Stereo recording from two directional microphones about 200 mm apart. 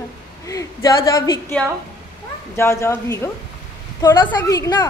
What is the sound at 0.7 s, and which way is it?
A woman's voice, 15° left (ahead or behind).